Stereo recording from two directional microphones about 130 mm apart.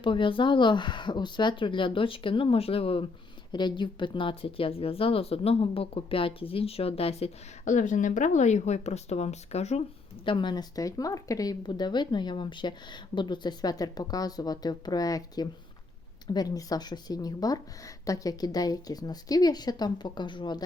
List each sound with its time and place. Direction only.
0.0 s speech: 40° left (ahead or behind)
3.5 s a woman's voice: 35° left (ahead or behind); by 9.8 s 55° left (ahead or behind)
10.2 s speech: 35° left (ahead or behind)